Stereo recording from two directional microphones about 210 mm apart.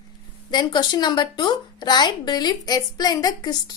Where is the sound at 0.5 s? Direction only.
20° left (ahead or behind).